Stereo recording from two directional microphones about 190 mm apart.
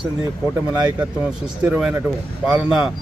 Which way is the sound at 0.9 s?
5° right (ahead or behind).